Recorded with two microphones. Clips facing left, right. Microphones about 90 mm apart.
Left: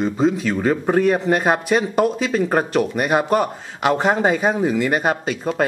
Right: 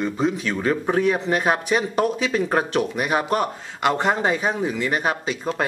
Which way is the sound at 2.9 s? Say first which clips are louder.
Left 5 dB; 45° left (ahead or behind).